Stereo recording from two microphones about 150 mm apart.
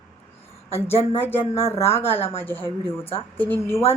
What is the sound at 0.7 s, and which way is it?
A woman's voice, 15° left (ahead or behind).